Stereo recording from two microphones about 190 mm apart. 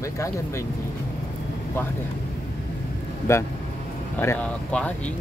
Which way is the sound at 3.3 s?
15° left (ahead or behind).